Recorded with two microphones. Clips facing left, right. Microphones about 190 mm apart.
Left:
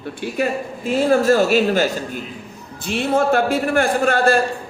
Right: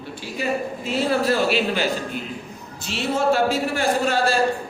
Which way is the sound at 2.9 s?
55° left (ahead or behind).